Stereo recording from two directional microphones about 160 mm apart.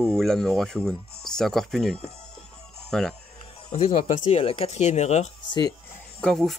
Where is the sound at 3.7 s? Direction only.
40° left (ahead or behind).